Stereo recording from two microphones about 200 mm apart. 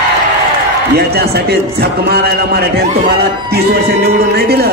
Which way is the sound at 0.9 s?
55° right (ahead or behind).